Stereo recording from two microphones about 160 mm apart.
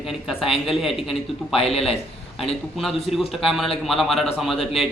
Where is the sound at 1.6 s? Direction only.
40° left (ahead or behind).